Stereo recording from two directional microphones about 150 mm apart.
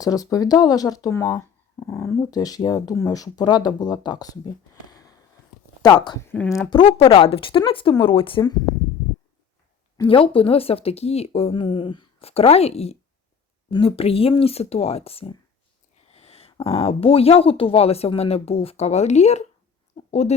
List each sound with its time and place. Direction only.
0.0 s speech: 25° left (ahead or behind)
6.2 s speech: 10° left (ahead or behind)
6.7 s speech: 35° left (ahead or behind)
10.0 s speech: 35° left (ahead or behind)
16.0 s a sound: 45° left (ahead or behind)
16.6 s speech: 40° left (ahead or behind)